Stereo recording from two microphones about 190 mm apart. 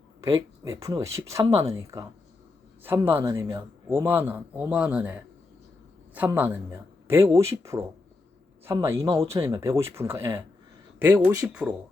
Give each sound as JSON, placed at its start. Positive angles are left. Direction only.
{"t": 0.2, "sound": "speech", "side_deg": -15}